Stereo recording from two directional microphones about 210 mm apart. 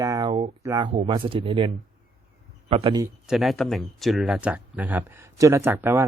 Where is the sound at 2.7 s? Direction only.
20° right (ahead or behind).